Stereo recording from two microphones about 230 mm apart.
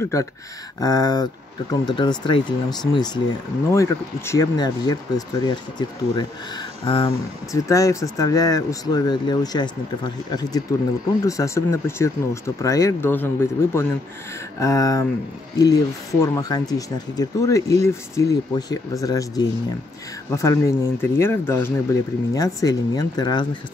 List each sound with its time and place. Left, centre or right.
0.0 s speech: centre